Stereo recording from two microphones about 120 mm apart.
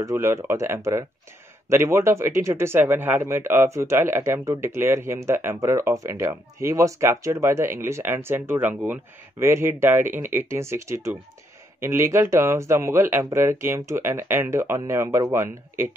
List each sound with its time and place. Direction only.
0.0 s speech: 25° right (ahead or behind)